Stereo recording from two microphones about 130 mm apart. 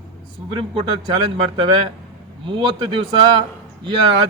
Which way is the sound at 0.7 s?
45° right (ahead or behind).